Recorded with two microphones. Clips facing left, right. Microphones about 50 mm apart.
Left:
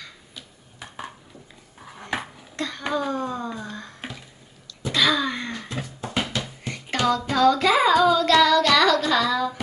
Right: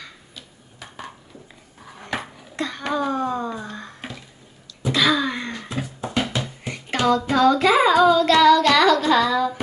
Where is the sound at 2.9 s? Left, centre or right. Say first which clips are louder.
Right 4 dB; centre.